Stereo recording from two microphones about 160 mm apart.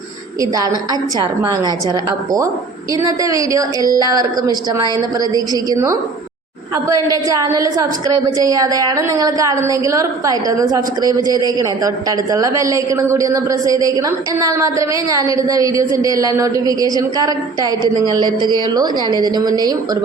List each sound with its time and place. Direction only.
0.5 s a woman's voice: 25° right (ahead or behind)
1.9 s a woman's voice: 25° right (ahead or behind)